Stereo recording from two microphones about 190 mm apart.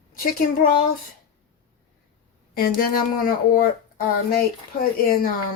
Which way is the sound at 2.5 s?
50° left (ahead or behind).